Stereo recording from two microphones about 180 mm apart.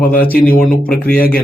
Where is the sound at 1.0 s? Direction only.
55° left (ahead or behind).